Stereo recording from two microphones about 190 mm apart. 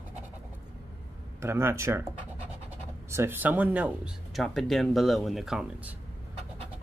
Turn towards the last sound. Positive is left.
turn(degrees=-5)  # may be behind; listen again after turning